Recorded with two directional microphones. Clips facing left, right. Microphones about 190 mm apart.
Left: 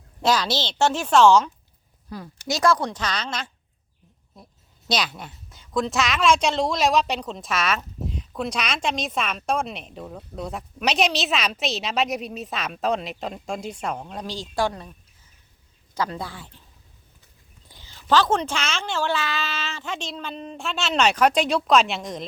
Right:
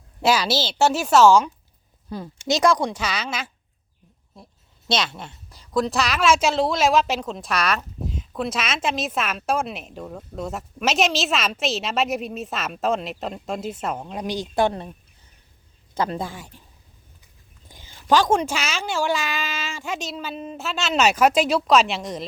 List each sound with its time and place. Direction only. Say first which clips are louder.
0.2 s speech: right 2 dB; 10° right (ahead or behind)
2.0 s speech: right 5 dB; 25° right (ahead or behind); by 3.5 s 5° right (ahead or behind)
4.9 s a woman's voice: right 1 dB; centre (ahead or behind); by 14.9 s 25° right (ahead or behind)
16.0 s speech: right 3 dB; 25° right (ahead or behind)
17.7 s speech: right 2 dB; 15° right (ahead or behind)